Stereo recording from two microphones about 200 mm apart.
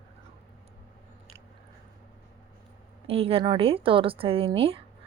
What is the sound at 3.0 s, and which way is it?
Speech, 30° right (ahead or behind).